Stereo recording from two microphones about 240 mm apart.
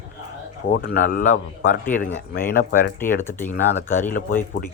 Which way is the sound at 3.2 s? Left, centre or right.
Centre.